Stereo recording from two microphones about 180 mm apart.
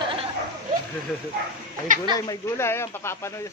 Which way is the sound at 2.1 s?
15° left (ahead or behind).